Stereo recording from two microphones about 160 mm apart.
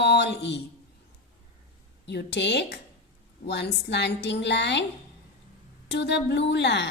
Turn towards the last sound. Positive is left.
turn(degrees=90)